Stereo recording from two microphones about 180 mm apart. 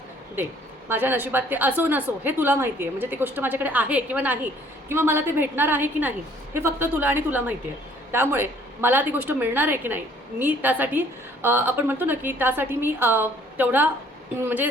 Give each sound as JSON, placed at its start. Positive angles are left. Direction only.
{"t": 0.9, "sound": "a woman's voice", "side_deg": -10}